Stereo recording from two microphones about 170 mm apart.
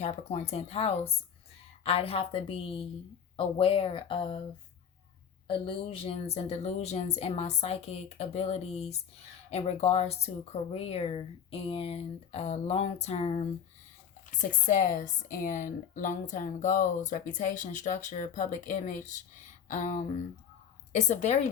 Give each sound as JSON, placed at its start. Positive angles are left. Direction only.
{"t": 0.0, "sound": "speech", "side_deg": 40}
{"t": 5.5, "sound": "speech", "side_deg": 30}